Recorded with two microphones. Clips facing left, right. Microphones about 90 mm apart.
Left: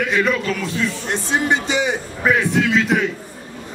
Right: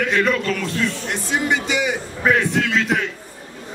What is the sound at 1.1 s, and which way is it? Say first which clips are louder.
Speech: left 4 dB; 30° left (ahead or behind).